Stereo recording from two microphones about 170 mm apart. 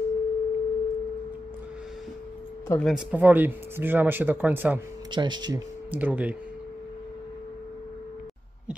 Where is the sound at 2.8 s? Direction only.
5° right (ahead or behind).